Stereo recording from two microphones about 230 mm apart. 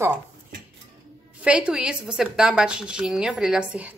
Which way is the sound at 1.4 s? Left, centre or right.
Centre.